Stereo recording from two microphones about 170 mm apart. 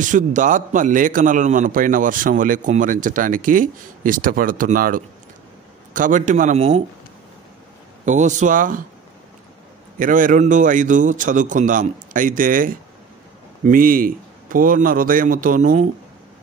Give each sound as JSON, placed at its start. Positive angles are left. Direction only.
{"t": 0.0, "sound": "a man's voice", "side_deg": -50}
{"t": 8.0, "sound": "a man's voice", "side_deg": -45}
{"t": 9.9, "sound": "a man's voice", "side_deg": -50}